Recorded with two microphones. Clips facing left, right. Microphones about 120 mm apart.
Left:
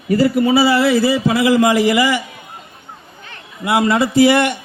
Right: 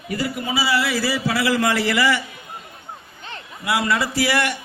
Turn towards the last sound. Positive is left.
turn(degrees=20)  # may be behind; listen again after turning